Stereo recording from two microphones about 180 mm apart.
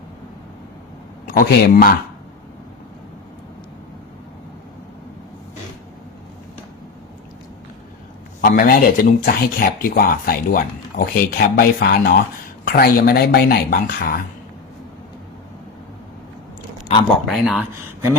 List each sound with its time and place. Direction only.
1.3 s speech: 55° left (ahead or behind)
8.4 s speech: 55° left (ahead or behind)
17.2 s speech: centre (ahead or behind)